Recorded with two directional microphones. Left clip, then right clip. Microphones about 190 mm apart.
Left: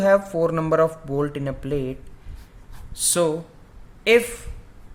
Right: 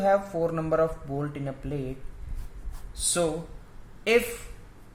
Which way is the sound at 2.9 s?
40° left (ahead or behind).